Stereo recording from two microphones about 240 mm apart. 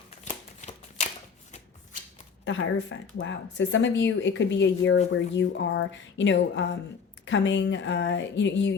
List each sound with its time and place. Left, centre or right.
0.3 s shuffling cards: left
2.4 s speech: left